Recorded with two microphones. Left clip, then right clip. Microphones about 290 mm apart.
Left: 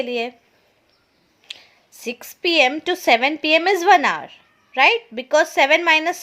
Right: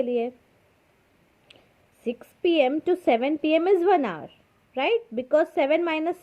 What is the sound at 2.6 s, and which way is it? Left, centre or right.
Speech, centre.